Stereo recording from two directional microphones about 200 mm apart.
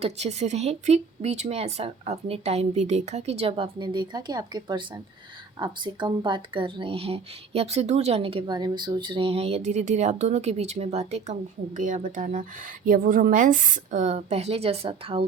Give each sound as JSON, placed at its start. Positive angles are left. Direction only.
{"t": 0.0, "sound": "speech", "side_deg": -35}